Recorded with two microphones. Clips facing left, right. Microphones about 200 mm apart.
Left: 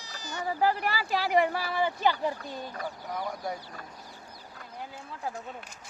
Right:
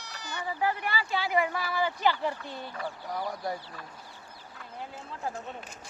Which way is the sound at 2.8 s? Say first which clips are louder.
Right 2 dB; 40° left (ahead or behind).